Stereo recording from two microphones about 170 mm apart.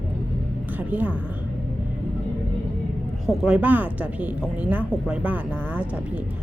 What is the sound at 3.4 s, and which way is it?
A woman's voice, 5° right (ahead or behind).